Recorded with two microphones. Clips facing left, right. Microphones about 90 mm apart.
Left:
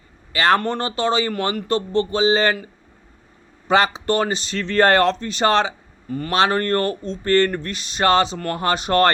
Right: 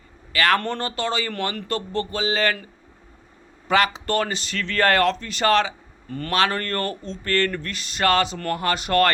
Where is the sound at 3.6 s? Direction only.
25° left (ahead or behind).